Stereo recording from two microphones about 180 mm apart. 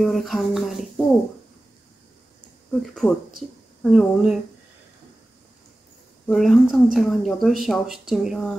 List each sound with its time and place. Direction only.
0.0 s speech: centre (ahead or behind)
2.9 s speech: centre (ahead or behind)
6.2 s speech: centre (ahead or behind)